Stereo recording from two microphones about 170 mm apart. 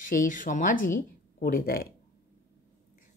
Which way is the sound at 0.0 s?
50° left (ahead or behind).